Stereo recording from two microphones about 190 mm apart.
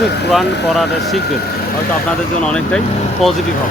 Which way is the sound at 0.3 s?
Centre (ahead or behind).